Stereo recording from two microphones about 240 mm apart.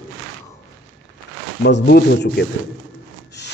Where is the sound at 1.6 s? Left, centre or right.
Left.